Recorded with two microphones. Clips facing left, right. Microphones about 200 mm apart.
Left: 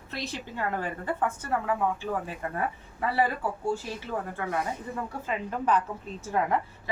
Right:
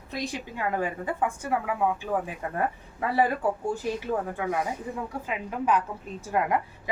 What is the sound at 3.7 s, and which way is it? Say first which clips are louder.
A woman's voice: right 4 dB; 15° right (ahead or behind).